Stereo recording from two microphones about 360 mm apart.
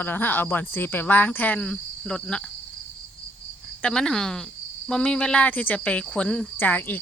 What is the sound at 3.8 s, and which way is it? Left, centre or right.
Speech, centre.